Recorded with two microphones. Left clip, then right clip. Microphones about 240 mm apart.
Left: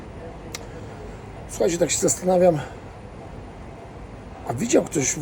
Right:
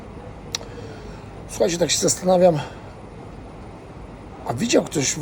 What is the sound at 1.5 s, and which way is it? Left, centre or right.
Speech, centre.